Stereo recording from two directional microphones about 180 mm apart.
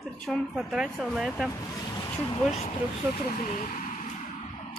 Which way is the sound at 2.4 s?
40° left (ahead or behind).